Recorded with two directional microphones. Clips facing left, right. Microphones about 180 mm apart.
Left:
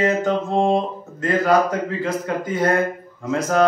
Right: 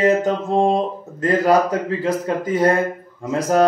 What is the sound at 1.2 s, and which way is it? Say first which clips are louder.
Speech: right 2 dB; 35° right (ahead or behind).